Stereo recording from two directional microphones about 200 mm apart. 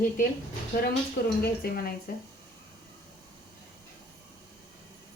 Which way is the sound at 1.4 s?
50° left (ahead or behind).